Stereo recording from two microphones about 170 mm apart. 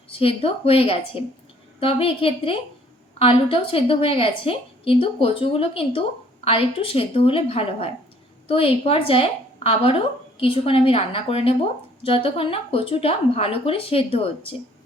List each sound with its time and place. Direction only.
0.1 s a woman's voice: 35° left (ahead or behind)